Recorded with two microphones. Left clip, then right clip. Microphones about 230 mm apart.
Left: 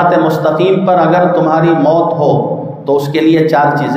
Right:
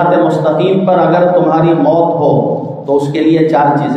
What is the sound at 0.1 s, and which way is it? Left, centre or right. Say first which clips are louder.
A man's voice: even; left.